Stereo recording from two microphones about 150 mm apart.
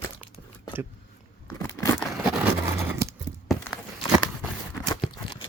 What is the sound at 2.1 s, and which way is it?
Vehicle, 5° right (ahead or behind).